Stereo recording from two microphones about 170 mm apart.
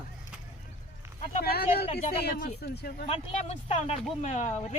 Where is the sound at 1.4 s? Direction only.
65° left (ahead or behind).